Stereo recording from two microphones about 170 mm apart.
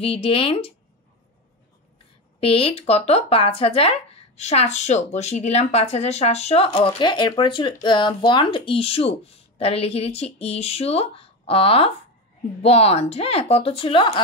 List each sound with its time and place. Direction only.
0.0 s speech: 35° left (ahead or behind)
2.4 s speech: 35° left (ahead or behind)